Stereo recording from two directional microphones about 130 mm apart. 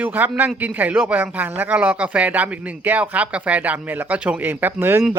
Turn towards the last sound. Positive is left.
turn(degrees=-15)  # may be behind; listen again after turning